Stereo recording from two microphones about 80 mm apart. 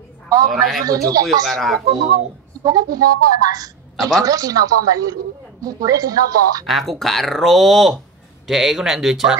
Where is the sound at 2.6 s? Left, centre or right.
Right.